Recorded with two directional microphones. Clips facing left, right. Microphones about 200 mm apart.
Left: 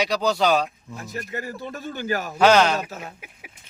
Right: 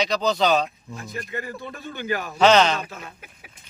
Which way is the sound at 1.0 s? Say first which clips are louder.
Left 1 dB; 40° left (ahead or behind).